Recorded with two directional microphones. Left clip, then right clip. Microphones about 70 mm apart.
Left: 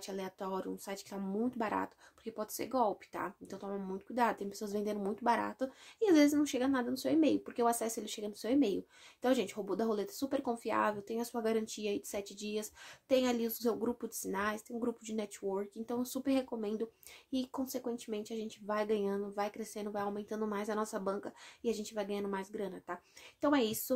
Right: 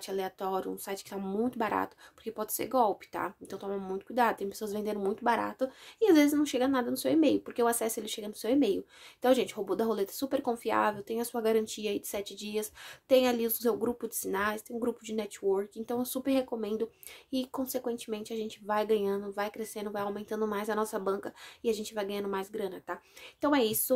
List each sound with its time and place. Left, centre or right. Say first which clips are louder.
0.0 s speech: right 7 dB; right